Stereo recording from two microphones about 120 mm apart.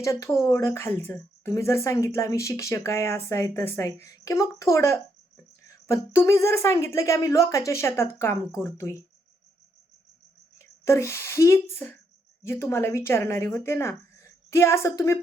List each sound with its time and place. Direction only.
0.0 s speech: 25° left (ahead or behind)
10.6 s speech: 25° left (ahead or behind)